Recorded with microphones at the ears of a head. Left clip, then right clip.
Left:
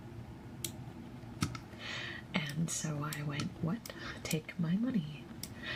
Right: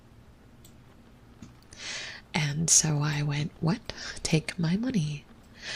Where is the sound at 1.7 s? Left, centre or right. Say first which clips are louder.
Right 9 dB; right.